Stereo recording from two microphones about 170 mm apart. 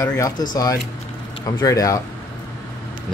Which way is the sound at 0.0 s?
15° left (ahead or behind).